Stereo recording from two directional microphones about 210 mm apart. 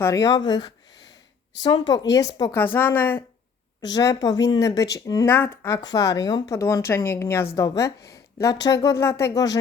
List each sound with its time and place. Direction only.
0.0 s a woman's voice: 15° left (ahead or behind)